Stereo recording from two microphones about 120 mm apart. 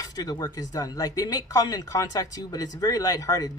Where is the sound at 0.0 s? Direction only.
30° left (ahead or behind).